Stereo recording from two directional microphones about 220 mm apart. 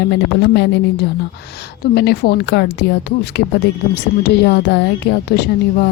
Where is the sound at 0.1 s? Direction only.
50° left (ahead or behind).